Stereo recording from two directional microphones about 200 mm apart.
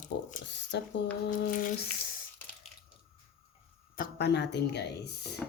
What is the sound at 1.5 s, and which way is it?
Squish, 45° left (ahead or behind).